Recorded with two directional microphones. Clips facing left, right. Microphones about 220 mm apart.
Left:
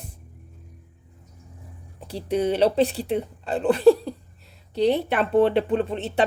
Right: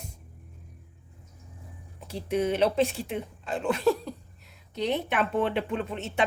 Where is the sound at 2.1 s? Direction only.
35° left (ahead or behind).